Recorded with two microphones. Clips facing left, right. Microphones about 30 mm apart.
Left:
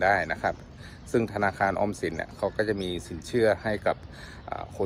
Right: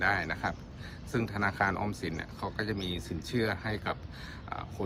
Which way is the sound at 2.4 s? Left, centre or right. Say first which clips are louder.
Left 9 dB; centre.